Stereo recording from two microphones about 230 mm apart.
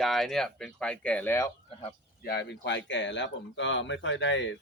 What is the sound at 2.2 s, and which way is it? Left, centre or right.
Speech, left.